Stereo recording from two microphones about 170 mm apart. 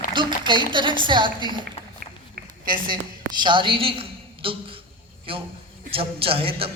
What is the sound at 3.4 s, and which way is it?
A woman's voice, 30° right (ahead or behind).